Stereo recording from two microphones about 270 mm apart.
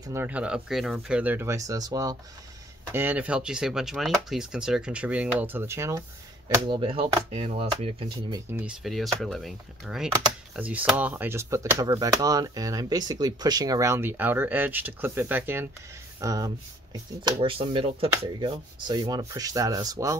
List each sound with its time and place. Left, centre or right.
0.0 s speech: centre
8.5 s speech: centre